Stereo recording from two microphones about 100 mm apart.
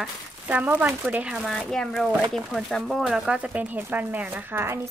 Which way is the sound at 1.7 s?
5° left (ahead or behind).